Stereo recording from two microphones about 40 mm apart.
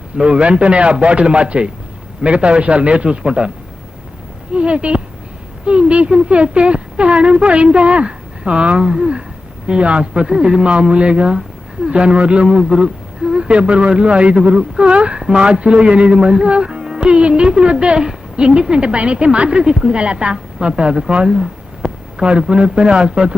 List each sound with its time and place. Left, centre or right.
0.2 s a woman's voice: right
4.5 s a woman's voice: right